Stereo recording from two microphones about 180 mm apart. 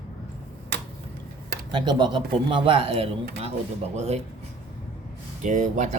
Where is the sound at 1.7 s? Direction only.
25° right (ahead or behind).